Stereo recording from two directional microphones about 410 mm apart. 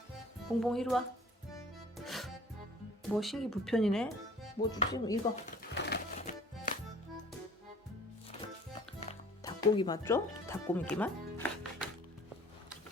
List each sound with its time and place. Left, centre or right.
0.4 s speech: centre
1.5 s music: centre
3.2 s speech: centre
5.7 s music: left
9.0 s music: centre